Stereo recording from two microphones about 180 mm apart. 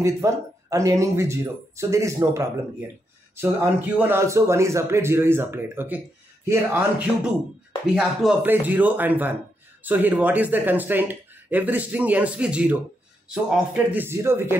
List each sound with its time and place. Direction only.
0.0 s a man's voice: 15° right (ahead or behind)